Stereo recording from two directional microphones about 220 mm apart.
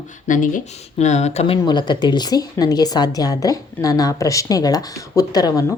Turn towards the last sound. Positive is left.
turn(degrees=15)  # may be behind; listen again after turning